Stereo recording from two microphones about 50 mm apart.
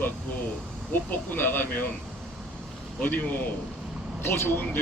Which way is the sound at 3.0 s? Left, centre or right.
Left.